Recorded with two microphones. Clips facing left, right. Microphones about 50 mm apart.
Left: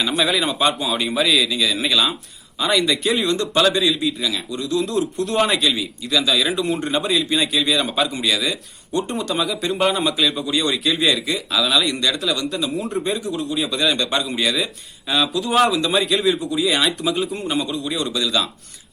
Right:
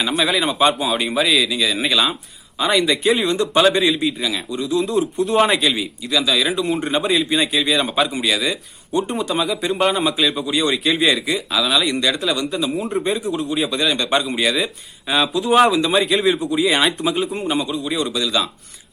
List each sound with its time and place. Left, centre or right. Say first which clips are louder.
0.2 s a man's voice: right 3 dB; centre
6.1 s speech: right 1 dB; centre
14.3 s speech: right 2 dB; centre